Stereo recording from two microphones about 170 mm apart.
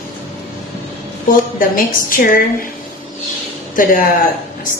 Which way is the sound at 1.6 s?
55° left (ahead or behind).